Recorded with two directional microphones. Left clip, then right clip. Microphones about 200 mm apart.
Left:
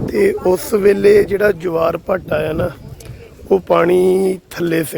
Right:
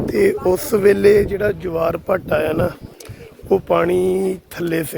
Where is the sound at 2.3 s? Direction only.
5° right (ahead or behind); by 4.8 s 10° left (ahead or behind).